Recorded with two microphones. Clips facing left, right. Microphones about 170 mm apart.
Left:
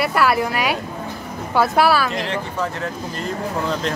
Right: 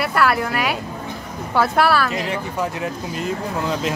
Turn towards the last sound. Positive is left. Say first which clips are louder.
# even
turn(degrees=-5)  # may be behind; listen again after turning